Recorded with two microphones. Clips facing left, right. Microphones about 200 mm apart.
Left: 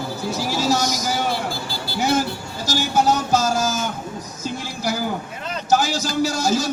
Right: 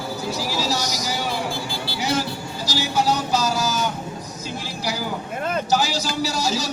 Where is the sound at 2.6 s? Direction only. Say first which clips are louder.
Left 3 dB; 50° left (ahead or behind).